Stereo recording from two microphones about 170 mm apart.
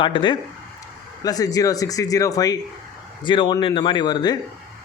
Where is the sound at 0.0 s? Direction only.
30° left (ahead or behind).